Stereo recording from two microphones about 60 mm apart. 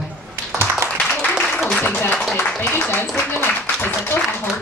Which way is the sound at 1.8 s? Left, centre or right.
Left.